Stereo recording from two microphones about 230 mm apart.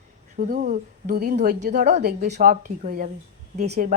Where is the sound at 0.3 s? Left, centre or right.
Right.